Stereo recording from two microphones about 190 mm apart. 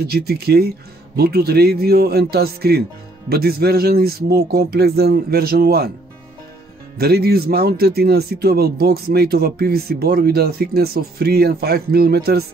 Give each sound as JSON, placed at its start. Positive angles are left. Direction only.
{"t": 0.0, "sound": "speech", "side_deg": -55}
{"t": 7.0, "sound": "speech", "side_deg": -55}